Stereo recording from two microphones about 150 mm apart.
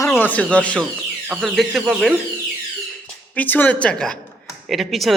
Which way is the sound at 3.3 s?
10° left (ahead or behind).